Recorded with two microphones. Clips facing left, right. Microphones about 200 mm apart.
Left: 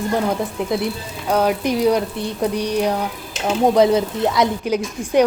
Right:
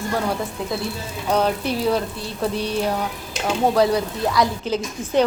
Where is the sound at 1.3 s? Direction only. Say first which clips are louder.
Left 3 dB; 10° left (ahead or behind).